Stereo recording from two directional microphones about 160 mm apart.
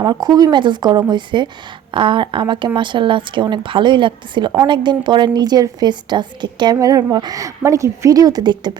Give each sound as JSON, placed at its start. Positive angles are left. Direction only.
{"t": 0.0, "sound": "a woman's voice", "side_deg": -25}